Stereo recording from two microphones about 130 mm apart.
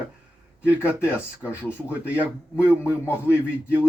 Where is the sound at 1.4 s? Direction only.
15° left (ahead or behind).